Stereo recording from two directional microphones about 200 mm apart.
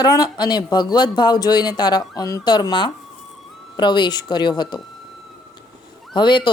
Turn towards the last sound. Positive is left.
turn(degrees=25)  # may be behind; listen again after turning